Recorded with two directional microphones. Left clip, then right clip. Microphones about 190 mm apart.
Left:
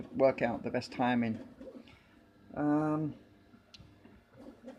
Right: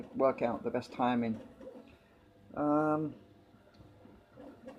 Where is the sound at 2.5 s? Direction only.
55° left (ahead or behind).